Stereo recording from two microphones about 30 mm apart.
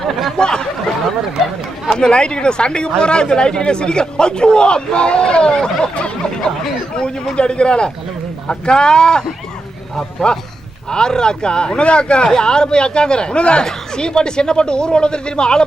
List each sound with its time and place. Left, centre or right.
0.3 s speech: left
2.0 s a man's voice: left
5.5 s a sound: left
7.3 s a man's voice: left
13.7 s speech: left